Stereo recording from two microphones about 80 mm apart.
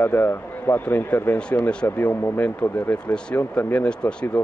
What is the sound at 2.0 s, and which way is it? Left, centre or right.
A man's voice, left.